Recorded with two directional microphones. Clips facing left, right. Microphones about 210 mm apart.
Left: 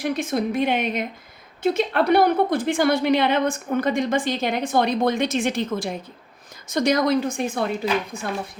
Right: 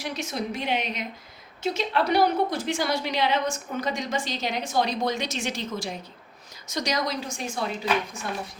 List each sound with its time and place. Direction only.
0.0 s a woman's voice: 55° left (ahead or behind)